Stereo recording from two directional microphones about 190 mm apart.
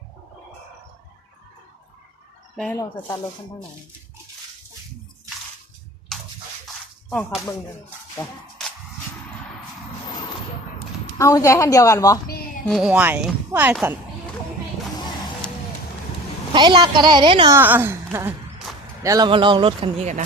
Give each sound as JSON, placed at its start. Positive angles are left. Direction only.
{"t": 6.1, "sound": "drip", "side_deg": 0}
{"t": 7.1, "sound": "a woman's voice", "side_deg": 5}
{"t": 8.2, "sound": "speech", "side_deg": 20}
{"t": 11.2, "sound": "a woman's voice", "side_deg": 15}
{"t": 12.6, "sound": "a woman's voice", "side_deg": 0}
{"t": 16.5, "sound": "speech", "side_deg": -25}
{"t": 17.6, "sound": "a woman's voice", "side_deg": -10}